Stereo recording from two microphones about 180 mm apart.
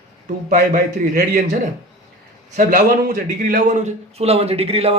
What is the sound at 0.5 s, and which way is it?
Speech, 55° right (ahead or behind).